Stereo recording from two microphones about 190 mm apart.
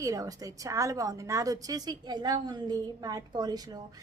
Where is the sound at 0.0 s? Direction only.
20° right (ahead or behind).